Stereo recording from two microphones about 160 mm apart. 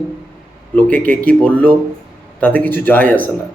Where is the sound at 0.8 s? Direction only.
10° left (ahead or behind).